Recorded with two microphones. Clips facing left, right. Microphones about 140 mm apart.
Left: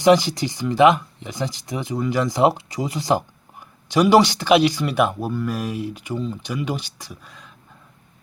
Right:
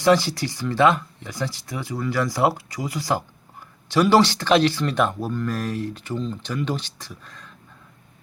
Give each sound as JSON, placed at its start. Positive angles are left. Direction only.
{"t": 0.0, "sound": "speech", "side_deg": 15}